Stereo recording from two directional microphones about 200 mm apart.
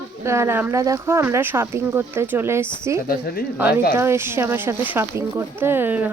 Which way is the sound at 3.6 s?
10° right (ahead or behind).